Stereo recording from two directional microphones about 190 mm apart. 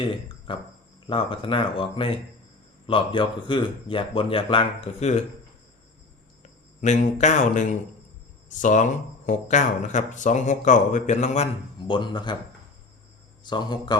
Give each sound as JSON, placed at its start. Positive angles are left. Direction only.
{"t": 0.5, "sound": "a man's voice", "side_deg": 25}
{"t": 6.4, "sound": "speech", "side_deg": 40}
{"t": 11.8, "sound": "a man's voice", "side_deg": 25}
{"t": 13.4, "sound": "a man's voice", "side_deg": 25}